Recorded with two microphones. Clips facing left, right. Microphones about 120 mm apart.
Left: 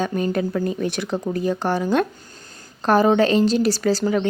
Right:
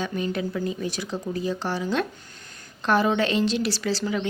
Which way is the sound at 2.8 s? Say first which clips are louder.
Left 6 dB; 40° left (ahead or behind).